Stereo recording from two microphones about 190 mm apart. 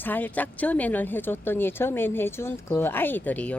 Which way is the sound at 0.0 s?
10° left (ahead or behind).